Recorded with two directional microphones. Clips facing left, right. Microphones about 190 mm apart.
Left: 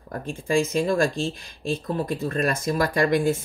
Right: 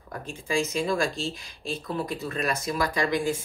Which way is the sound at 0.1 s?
50° left (ahead or behind).